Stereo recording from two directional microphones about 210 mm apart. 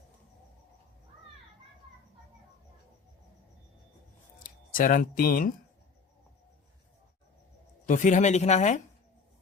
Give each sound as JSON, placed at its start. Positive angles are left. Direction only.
{"t": 4.4, "sound": "speech", "side_deg": 40}
{"t": 7.9, "sound": "speech", "side_deg": 35}